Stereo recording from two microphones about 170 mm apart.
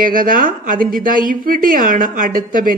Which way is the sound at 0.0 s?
55° right (ahead or behind).